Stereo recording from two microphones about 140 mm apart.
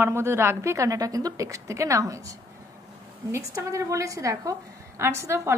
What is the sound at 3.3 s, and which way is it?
A woman's voice, 20° right (ahead or behind).